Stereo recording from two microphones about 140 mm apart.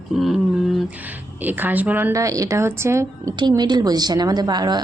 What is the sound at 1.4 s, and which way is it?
A woman's voice, 15° right (ahead or behind).